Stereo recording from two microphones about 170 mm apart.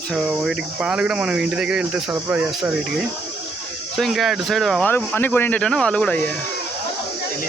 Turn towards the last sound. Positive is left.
turn(degrees=10)  # may be behind; listen again after turning